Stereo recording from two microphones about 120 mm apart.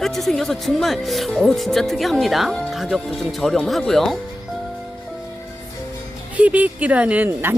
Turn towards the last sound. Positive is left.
turn(degrees=-15)  # may be behind; listen again after turning